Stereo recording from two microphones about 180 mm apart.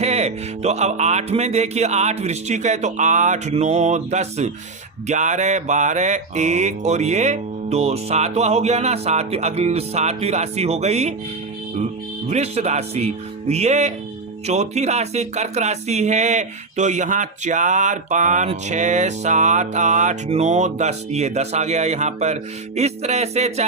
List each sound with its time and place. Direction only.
0.0 s speech: 35° right (ahead or behind)
12.3 s speech: 35° right (ahead or behind)